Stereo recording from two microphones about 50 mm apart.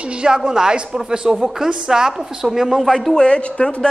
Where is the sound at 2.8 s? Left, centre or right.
Centre.